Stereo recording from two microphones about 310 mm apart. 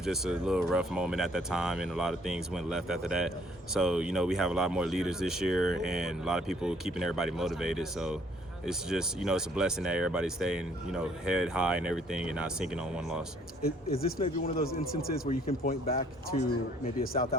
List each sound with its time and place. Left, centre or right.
0.0 s speech: centre
13.9 s speech: left